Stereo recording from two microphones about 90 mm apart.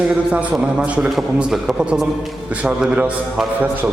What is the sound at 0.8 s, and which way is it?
A man's voice, 15° right (ahead or behind).